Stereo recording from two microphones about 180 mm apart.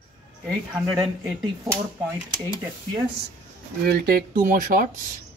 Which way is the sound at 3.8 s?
55° right (ahead or behind).